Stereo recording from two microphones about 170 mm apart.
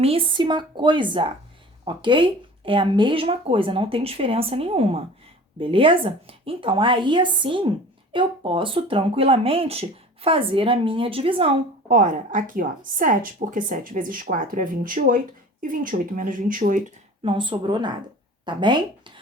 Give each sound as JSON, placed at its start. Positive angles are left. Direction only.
{"t": 0.0, "sound": "a woman's voice", "side_deg": -35}
{"t": 11.9, "sound": "a woman's voice", "side_deg": -50}
{"t": 17.2, "sound": "a woman's voice", "side_deg": -30}